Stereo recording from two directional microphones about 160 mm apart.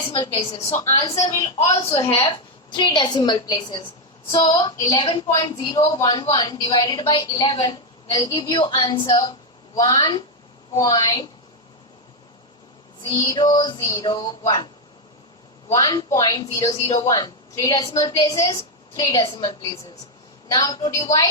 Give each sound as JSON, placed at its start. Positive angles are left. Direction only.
{"t": 0.1, "sound": "a woman's voice", "side_deg": 40}
{"t": 0.9, "sound": "a woman's voice", "side_deg": 20}
{"t": 1.7, "sound": "a woman's voice", "side_deg": 35}
{"t": 13.0, "sound": "a woman's voice", "side_deg": 20}
{"t": 15.7, "sound": "a woman's voice", "side_deg": 25}